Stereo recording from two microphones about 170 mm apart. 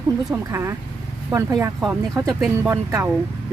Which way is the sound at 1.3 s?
20° right (ahead or behind).